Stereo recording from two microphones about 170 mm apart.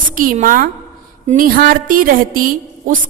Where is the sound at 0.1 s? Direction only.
50° right (ahead or behind).